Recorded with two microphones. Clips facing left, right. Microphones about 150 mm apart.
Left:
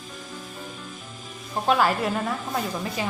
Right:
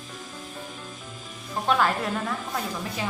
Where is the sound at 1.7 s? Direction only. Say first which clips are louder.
Left 2 dB; 5° left (ahead or behind).